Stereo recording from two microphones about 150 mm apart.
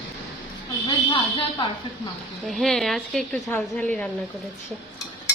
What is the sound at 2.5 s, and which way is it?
Speech, centre (ahead or behind).